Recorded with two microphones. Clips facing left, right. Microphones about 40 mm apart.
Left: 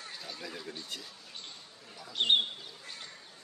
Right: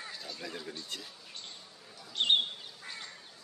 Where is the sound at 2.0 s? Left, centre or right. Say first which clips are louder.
Left 1 dB; centre.